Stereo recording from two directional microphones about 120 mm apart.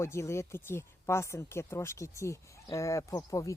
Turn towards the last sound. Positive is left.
turn(degrees=30)  # may be behind; listen again after turning